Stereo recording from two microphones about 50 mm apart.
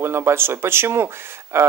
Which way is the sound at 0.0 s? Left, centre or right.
Right.